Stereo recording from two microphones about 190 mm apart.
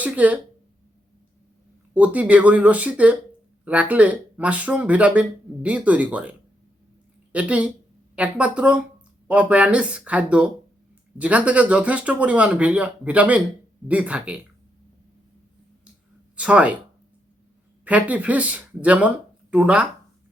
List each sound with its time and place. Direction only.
0.0 s speech: 5° right (ahead or behind)
1.9 s speech: 10° right (ahead or behind)
7.3 s speech: 5° right (ahead or behind)
16.3 s speech: 5° right (ahead or behind)
17.8 s speech: 10° right (ahead or behind)